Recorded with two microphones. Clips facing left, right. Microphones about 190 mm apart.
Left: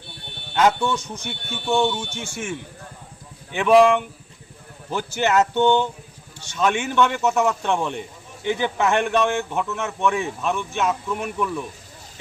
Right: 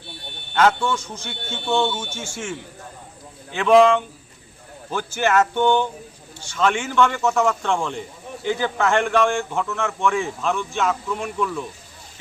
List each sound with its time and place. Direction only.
0.5 s a man's voice: 15° left (ahead or behind)